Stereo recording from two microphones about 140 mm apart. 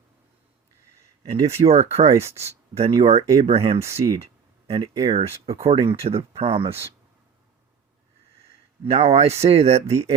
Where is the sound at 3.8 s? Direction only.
20° right (ahead or behind).